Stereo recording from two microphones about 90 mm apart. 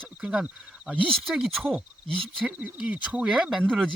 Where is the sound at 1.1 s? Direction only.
Centre (ahead or behind).